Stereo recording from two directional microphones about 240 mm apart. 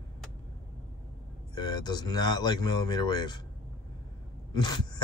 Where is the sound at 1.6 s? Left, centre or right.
Centre.